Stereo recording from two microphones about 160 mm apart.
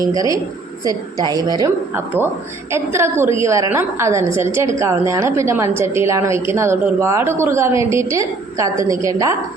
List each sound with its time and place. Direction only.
0.0 s a woman's voice: 20° right (ahead or behind)
2.7 s a woman's voice: 15° right (ahead or behind)